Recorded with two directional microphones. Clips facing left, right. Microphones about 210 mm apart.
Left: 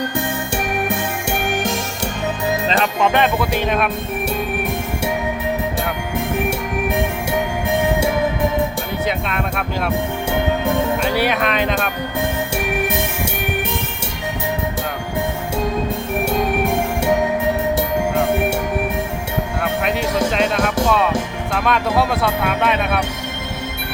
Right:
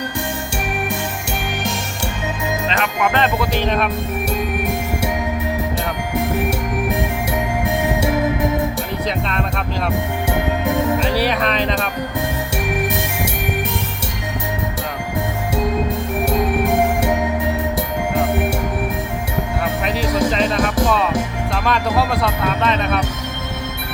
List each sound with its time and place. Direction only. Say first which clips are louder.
0.5 s music: left 4 dB; 55° left (ahead or behind)
2.6 s music: left 2 dB; 35° left (ahead or behind)
3.1 s speech: left 1 dB; 10° left (ahead or behind)
9.0 s speech: left 1 dB; 5° left (ahead or behind)
11.0 s speech: even; centre (ahead or behind)
19.6 s music: left 2 dB; centre (ahead or behind)
21.5 s speech: left 1 dB; 5° left (ahead or behind)